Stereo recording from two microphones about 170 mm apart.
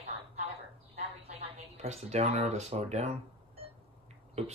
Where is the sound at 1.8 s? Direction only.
40° right (ahead or behind).